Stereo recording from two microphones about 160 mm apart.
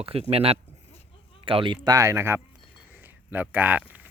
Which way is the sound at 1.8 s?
20° right (ahead or behind).